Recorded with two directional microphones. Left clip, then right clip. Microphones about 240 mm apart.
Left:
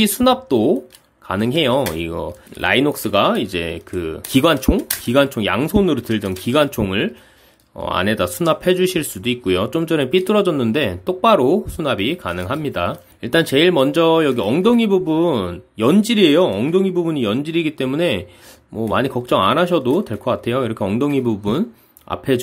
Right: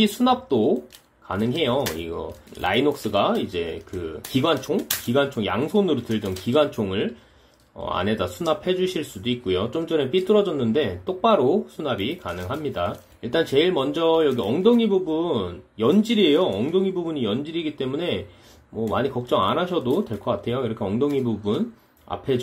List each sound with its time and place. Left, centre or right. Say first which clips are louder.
0.0 s speech: left 5 dB; left